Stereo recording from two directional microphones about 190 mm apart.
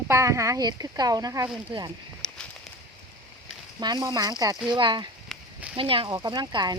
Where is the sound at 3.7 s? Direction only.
20° right (ahead or behind).